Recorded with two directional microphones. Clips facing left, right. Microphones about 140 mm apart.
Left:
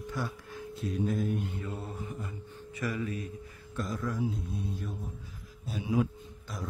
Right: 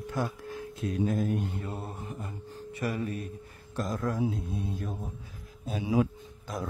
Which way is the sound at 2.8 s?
30° right (ahead or behind).